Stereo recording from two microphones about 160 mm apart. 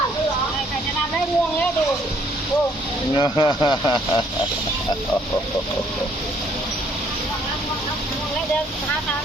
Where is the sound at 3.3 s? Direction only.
30° left (ahead or behind).